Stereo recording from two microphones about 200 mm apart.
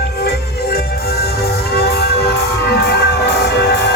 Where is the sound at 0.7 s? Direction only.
50° left (ahead or behind).